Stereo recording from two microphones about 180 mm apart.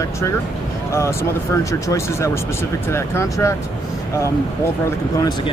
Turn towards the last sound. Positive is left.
turn(degrees=15)  # may be behind; listen again after turning